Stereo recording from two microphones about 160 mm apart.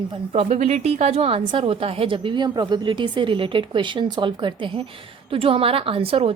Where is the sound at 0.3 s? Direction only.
45° right (ahead or behind).